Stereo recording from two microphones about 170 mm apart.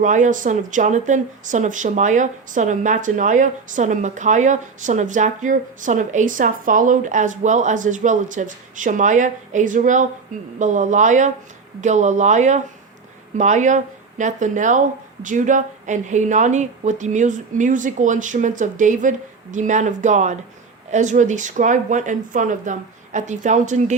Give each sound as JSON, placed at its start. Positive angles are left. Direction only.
{"t": 0.0, "sound": "speech", "side_deg": -50}